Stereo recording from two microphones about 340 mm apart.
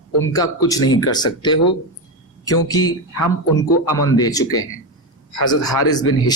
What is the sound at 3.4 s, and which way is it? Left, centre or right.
Speech, left.